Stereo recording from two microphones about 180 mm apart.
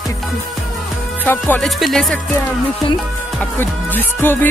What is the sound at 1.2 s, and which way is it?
Speech, 10° left (ahead or behind).